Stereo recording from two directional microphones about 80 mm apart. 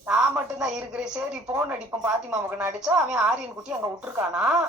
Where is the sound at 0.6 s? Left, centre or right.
Centre.